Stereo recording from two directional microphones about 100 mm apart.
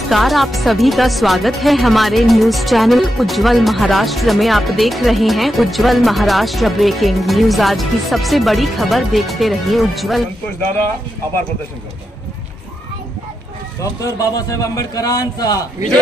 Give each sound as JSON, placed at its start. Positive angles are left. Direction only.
{"t": 0.1, "sound": "speech", "side_deg": 0}
{"t": 13.7, "sound": "a man's voice", "side_deg": 35}